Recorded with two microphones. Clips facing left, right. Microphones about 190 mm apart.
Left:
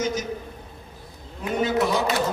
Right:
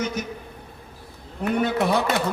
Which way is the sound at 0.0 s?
60° right (ahead or behind).